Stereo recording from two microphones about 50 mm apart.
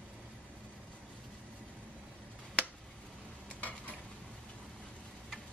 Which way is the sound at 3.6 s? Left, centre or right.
Left.